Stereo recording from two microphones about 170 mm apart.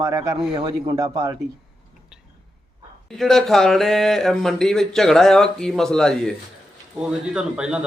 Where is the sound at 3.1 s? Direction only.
Centre (ahead or behind).